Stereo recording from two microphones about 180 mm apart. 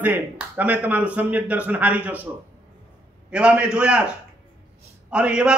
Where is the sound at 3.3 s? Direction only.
5° right (ahead or behind).